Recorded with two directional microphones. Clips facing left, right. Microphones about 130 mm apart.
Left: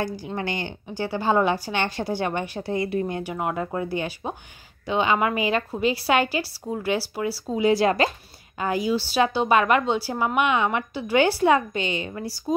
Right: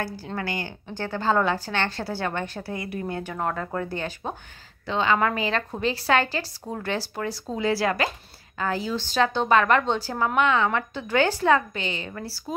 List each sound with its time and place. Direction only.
0.0 s speech: 15° left (ahead or behind)
0.8 s speech: 10° left (ahead or behind)